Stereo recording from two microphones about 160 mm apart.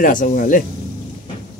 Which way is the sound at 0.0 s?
55° left (ahead or behind).